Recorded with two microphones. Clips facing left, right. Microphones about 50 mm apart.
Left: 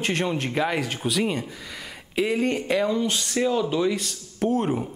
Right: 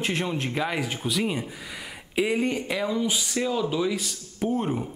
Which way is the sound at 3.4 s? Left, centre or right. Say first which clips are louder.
Left 4 dB; centre.